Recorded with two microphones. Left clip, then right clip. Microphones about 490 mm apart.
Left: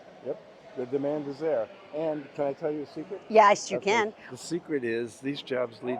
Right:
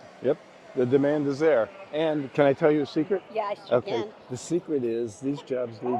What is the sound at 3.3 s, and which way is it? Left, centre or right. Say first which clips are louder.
Speech: left 10 dB; left.